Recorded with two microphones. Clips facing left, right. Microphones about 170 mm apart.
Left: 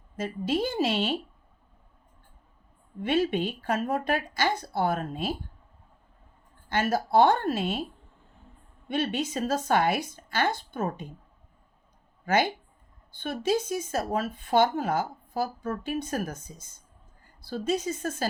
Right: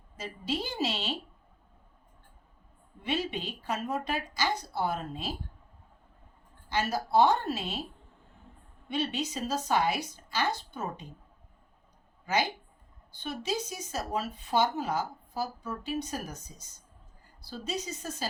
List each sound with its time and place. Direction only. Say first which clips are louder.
0.2 s speech: left 7 dB; 50° left (ahead or behind)
3.0 s speech: left 7 dB; 55° left (ahead or behind)
6.7 s speech: left 4 dB; 55° left (ahead or behind)
8.9 s speech: left 4 dB; 50° left (ahead or behind)
12.2 s speech: left 5 dB; 55° left (ahead or behind)